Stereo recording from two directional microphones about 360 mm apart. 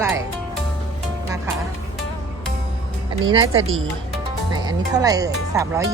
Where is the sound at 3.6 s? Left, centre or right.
Right.